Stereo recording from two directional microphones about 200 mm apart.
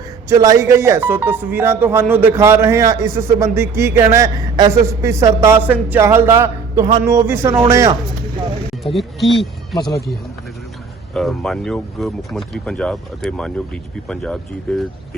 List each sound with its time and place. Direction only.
0.3 s a man's voice: 15° right (ahead or behind)
8.8 s speech: centre (ahead or behind)
11.1 s speech: centre (ahead or behind)